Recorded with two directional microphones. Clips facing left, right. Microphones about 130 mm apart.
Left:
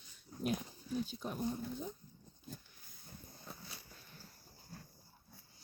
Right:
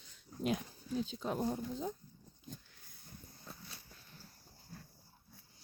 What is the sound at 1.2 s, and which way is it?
Speech, 90° right.